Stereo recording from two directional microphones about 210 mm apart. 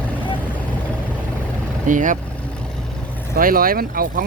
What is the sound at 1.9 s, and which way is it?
Speech, 40° right (ahead or behind).